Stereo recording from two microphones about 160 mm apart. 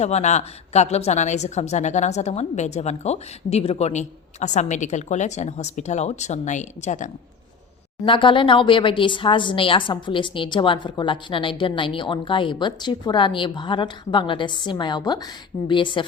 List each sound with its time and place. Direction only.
0.0 s a woman's voice: 45° left (ahead or behind)
8.0 s speech: 30° left (ahead or behind)